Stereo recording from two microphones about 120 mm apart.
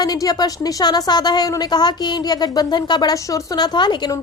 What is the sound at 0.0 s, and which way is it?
Speech, 35° left (ahead or behind).